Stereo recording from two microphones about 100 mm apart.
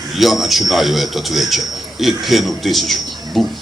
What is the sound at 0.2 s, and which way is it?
A man's voice, centre (ahead or behind).